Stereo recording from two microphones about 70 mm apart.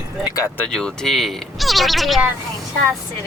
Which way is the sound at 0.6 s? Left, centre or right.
Centre.